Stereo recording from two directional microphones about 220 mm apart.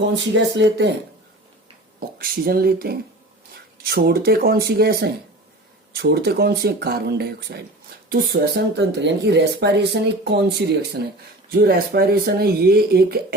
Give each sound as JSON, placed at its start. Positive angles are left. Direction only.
{"t": 0.1, "sound": "speech", "side_deg": -50}
{"t": 2.0, "sound": "speech", "side_deg": -45}